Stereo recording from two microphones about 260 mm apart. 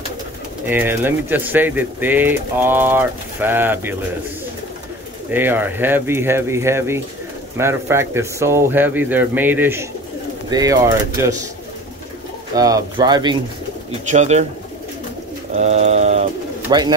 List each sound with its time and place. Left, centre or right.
0.7 s speech: centre
5.3 s speech: centre
12.5 s speech: centre
15.5 s pigeon: right
16.6 s speech: centre